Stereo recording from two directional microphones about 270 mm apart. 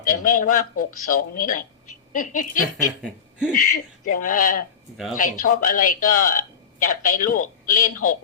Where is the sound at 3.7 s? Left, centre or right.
Left.